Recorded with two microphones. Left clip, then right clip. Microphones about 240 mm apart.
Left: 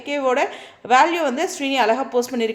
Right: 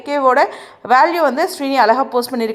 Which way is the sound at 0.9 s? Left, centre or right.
Centre.